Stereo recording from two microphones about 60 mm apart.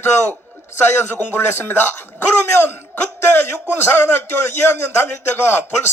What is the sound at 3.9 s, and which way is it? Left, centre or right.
Speech, left.